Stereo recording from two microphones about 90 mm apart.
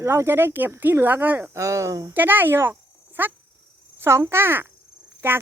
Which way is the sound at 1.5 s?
35° right (ahead or behind).